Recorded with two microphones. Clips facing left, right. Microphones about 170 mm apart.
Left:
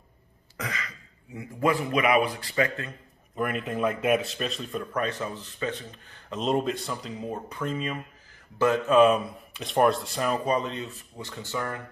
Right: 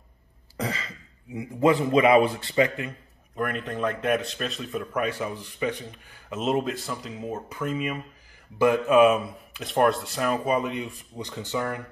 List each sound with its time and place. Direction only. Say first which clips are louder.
0.6 s speech: right 5 dB; 30° right (ahead or behind)
3.3 s a man's voice: even; 5° left (ahead or behind); by 11.8 s 20° right (ahead or behind)